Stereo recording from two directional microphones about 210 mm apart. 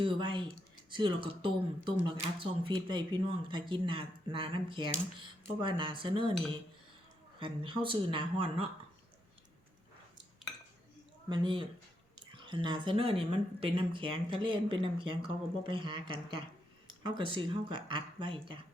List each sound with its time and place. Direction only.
0.0 s speech: 25° right (ahead or behind)
7.3 s speech: 25° right (ahead or behind)
11.3 s speech: 25° right (ahead or behind)